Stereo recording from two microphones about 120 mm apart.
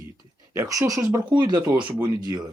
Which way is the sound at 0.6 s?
30° right (ahead or behind).